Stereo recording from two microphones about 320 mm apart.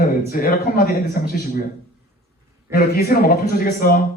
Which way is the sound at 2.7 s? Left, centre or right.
Left.